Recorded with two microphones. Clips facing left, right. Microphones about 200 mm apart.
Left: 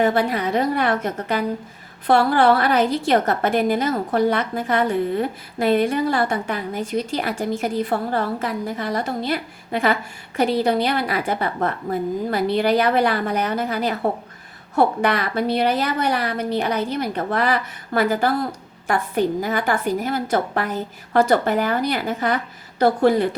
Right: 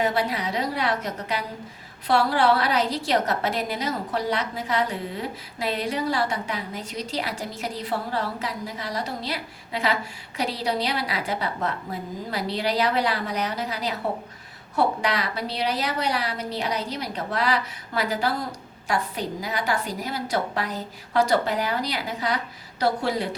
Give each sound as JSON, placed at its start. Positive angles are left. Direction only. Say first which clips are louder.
{"t": 0.0, "sound": "a woman's voice", "louder": "left 6 dB", "side_deg": 50}